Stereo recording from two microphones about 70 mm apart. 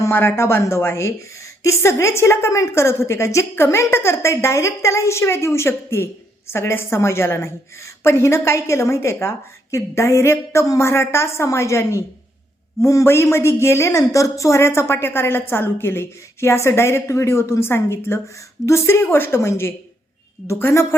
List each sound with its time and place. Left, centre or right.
0.1 s a woman's voice: left